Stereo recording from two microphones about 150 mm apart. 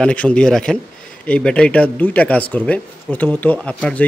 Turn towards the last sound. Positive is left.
turn(degrees=10)  # may be behind; listen again after turning